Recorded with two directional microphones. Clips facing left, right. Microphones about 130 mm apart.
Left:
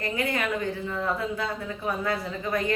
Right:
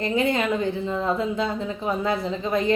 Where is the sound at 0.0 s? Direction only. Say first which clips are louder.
Right 6 dB; 25° right (ahead or behind).